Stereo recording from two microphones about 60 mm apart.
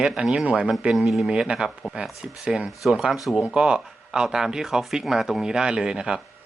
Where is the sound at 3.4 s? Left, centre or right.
Centre.